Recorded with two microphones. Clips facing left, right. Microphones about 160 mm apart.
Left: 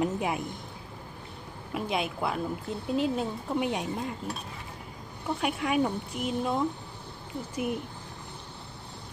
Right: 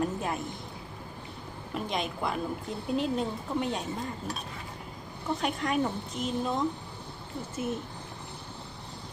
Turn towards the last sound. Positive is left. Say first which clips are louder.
# left 2 dB
turn(degrees=15)  # may be behind; listen again after turning